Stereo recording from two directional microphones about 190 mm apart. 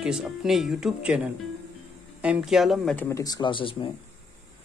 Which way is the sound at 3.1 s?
20° left (ahead or behind).